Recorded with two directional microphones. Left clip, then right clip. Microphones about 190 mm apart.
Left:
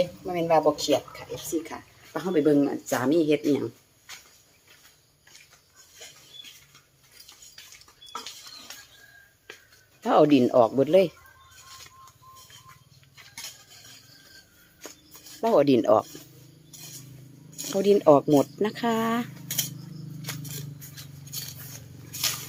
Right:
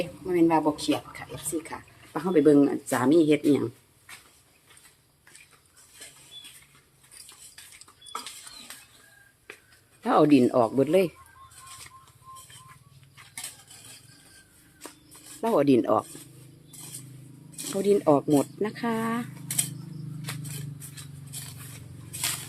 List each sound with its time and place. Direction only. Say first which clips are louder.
0.3 s speech: even; centre (ahead or behind)
10.0 s speech: left 1 dB; 10° left (ahead or behind)
15.5 s speech: left 2 dB; 20° left (ahead or behind)
17.7 s speech: left 4 dB; 35° left (ahead or behind)
18.3 s speech: left 3 dB; 45° left (ahead or behind)